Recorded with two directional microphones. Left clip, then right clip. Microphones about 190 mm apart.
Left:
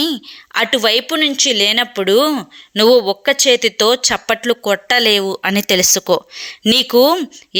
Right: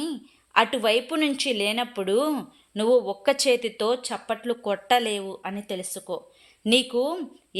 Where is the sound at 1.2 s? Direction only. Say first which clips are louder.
Left 11 dB; 15° left (ahead or behind); by 3.1 s 35° left (ahead or behind).